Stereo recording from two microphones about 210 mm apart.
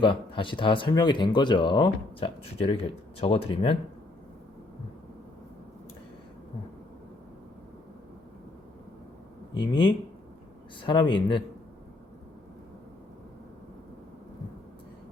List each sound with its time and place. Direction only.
0.0 s speech: 25° left (ahead or behind)
9.6 s speech: 20° left (ahead or behind)